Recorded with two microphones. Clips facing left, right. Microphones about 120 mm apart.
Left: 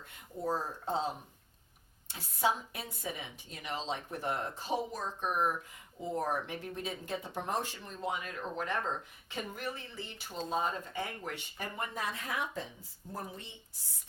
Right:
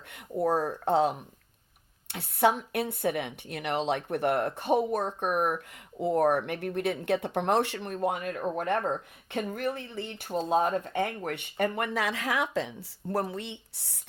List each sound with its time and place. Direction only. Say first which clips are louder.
0.1 s speech: right 8 dB; 65° right (ahead or behind)